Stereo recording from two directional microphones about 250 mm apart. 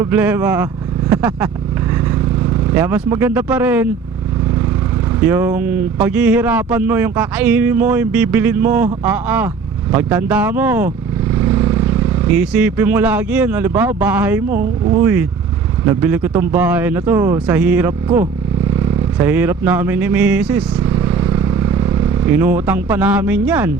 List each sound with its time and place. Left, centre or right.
0.0 s speech: centre
2.7 s speech: centre
5.2 s speech: centre
14.5 s speech: right
15.0 s speech: centre